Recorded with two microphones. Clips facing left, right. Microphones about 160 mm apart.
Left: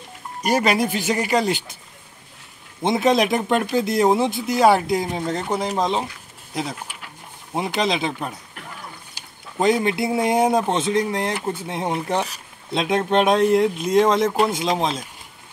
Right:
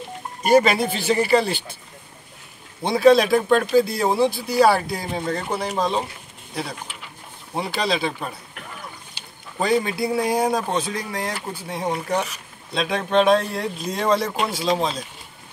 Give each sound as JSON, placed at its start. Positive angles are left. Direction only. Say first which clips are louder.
{"t": 0.7, "sound": "speech", "louder": "right 1 dB", "side_deg": 15}
{"t": 2.8, "sound": "speech", "louder": "right 3 dB", "side_deg": 20}
{"t": 7.5, "sound": "speech", "louder": "left 2 dB", "side_deg": 20}
{"t": 9.6, "sound": "speech", "louder": "left 2 dB", "side_deg": 20}